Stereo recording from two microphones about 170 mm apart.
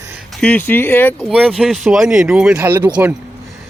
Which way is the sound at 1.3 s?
Centre (ahead or behind).